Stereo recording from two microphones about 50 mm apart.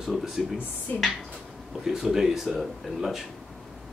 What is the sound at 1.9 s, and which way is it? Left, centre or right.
A man's voice, centre.